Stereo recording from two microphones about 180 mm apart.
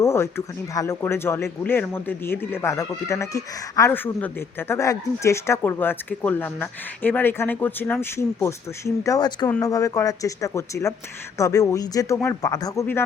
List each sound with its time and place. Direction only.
0.0 s speech: 15° left (ahead or behind)